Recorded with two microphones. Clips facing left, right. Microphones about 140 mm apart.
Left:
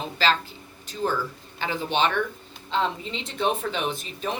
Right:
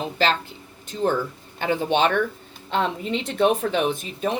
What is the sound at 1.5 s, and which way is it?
Speech, 50° right (ahead or behind).